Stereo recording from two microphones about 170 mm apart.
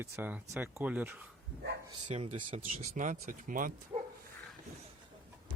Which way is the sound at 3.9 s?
30° right (ahead or behind).